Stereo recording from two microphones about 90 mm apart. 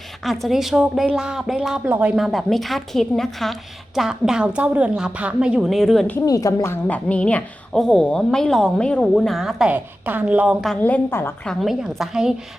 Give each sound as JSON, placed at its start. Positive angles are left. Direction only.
{"t": 0.3, "sound": "a woman's voice", "side_deg": 0}
{"t": 2.1, "sound": "a woman's voice", "side_deg": 0}
{"t": 5.7, "sound": "a woman's voice", "side_deg": 0}
{"t": 6.2, "sound": "a woman's voice", "side_deg": 40}
{"t": 6.8, "sound": "a woman's voice", "side_deg": 15}
{"t": 9.7, "sound": "a woman's voice", "side_deg": -20}
{"t": 10.8, "sound": "a woman's voice", "side_deg": 20}
{"t": 11.6, "sound": "a woman's voice", "side_deg": -5}